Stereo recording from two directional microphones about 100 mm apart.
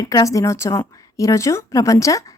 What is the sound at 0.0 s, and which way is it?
A woman's voice, 35° left (ahead or behind).